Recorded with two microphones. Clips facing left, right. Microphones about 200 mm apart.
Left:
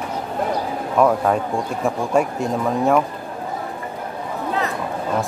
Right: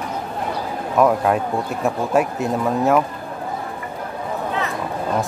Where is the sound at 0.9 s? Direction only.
5° right (ahead or behind).